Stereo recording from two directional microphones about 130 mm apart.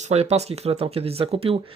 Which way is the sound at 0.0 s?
55° right (ahead or behind).